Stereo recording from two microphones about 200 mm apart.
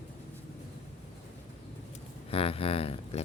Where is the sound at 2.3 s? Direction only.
30° left (ahead or behind).